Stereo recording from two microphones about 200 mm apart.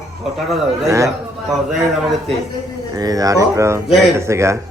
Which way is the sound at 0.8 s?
15° right (ahead or behind).